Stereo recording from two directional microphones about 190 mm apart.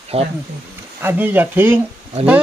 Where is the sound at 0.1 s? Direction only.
30° right (ahead or behind).